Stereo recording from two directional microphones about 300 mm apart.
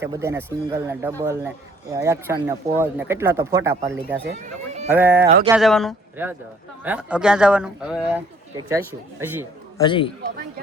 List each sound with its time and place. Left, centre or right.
0.0 s speech: centre
4.9 s speech: centre
9.7 s a man's voice: centre